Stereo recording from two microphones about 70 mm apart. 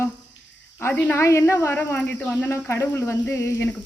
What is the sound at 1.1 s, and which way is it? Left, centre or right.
Speech, left.